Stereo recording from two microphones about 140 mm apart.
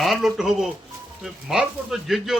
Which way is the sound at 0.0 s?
Centre (ahead or behind).